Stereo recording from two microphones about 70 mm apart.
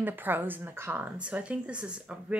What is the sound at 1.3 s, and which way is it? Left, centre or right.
Speech, centre.